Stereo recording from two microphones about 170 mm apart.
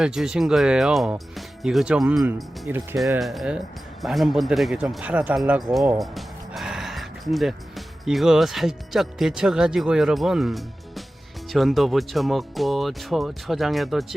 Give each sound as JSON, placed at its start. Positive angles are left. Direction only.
{"t": 0.0, "sound": "speech", "side_deg": -5}
{"t": 3.2, "sound": "speech", "side_deg": 0}